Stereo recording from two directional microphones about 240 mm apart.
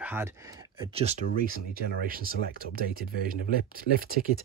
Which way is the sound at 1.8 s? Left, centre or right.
Right.